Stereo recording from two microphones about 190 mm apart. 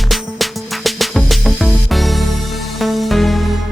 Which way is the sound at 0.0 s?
Centre (ahead or behind).